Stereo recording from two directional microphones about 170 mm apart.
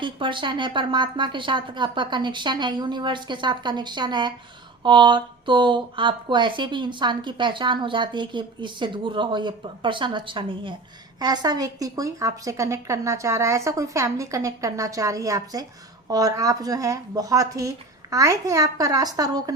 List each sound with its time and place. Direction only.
0.0 s speech: 30° right (ahead or behind)